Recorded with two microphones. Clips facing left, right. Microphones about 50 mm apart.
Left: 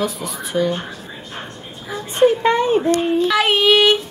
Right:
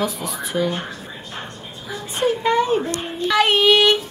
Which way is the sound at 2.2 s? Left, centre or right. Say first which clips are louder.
Left 3 dB; left.